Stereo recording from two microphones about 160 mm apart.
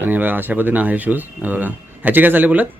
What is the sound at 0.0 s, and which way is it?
Speech, 10° right (ahead or behind).